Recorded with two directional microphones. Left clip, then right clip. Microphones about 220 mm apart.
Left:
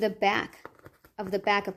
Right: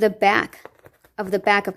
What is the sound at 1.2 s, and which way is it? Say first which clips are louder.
Speech: right 7 dB; 40° right (ahead or behind).